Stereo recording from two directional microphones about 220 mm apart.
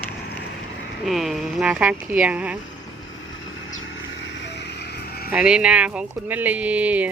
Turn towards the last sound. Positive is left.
turn(degrees=-5)  # may be behind; listen again after turning